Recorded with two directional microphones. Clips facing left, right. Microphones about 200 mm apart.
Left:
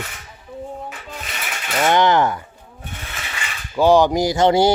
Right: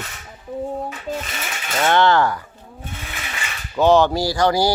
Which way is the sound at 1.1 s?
45° right (ahead or behind).